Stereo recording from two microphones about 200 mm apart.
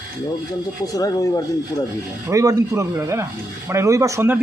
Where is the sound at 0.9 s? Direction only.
15° left (ahead or behind).